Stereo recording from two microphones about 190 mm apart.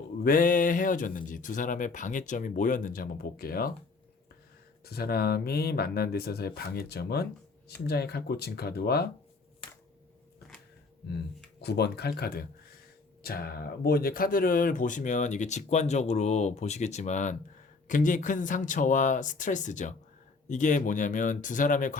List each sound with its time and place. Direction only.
0.2 s speech: 45° left (ahead or behind)
4.9 s speech: 55° left (ahead or behind)
11.6 s speech: 60° left (ahead or behind); by 21.9 s 45° left (ahead or behind)